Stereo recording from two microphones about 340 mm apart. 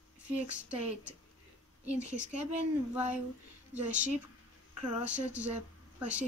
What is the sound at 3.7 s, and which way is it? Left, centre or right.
Speech, right.